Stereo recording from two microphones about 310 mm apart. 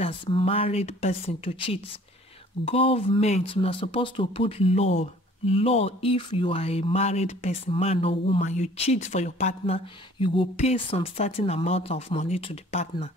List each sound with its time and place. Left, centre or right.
0.0 s speech: centre